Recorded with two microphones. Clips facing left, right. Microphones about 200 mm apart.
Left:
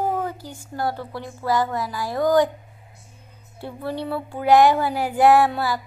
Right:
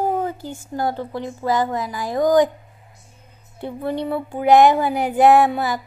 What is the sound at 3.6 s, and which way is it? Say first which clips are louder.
Speech: right 4 dB; 20° right (ahead or behind).